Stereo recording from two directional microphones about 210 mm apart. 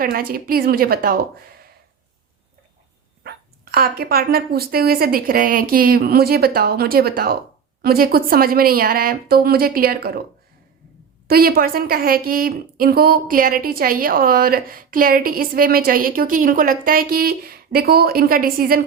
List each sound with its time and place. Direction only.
0.0 s a woman's voice: 45° right (ahead or behind)
3.2 s a woman's voice: 45° right (ahead or behind)
11.3 s a woman's voice: 45° right (ahead or behind)